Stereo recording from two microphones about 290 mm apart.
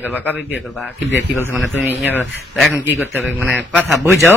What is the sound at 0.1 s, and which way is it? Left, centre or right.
A man's voice, centre.